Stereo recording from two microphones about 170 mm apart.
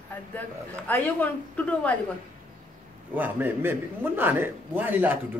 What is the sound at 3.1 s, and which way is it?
Speech, 10° right (ahead or behind).